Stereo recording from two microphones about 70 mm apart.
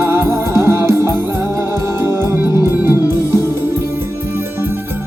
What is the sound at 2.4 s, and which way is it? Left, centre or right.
Music, right.